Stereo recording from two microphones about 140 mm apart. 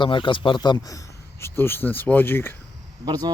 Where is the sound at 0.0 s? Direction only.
35° left (ahead or behind); by 2.6 s 15° left (ahead or behind).